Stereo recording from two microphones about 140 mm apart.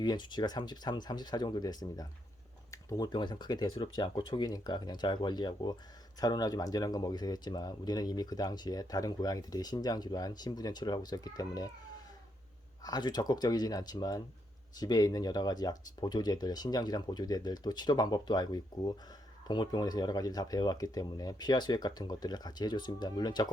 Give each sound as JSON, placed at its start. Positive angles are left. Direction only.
{"t": 0.0, "sound": "speech", "side_deg": 30}
{"t": 12.8, "sound": "speech", "side_deg": 30}